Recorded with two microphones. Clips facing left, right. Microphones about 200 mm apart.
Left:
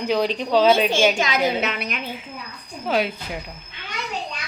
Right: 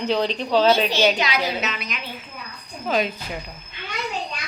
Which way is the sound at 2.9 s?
10° left (ahead or behind).